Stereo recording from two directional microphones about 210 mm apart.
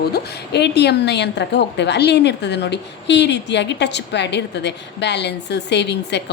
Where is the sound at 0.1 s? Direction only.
50° left (ahead or behind).